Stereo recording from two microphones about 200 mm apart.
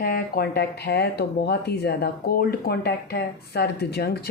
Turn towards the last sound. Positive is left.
turn(degrees=50)  # may be behind; listen again after turning